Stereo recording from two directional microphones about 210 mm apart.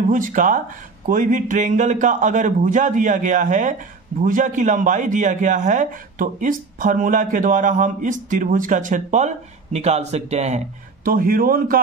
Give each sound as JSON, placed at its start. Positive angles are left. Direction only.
{"t": 0.1, "sound": "a man's voice", "side_deg": -40}
{"t": 11.1, "sound": "speech", "side_deg": -45}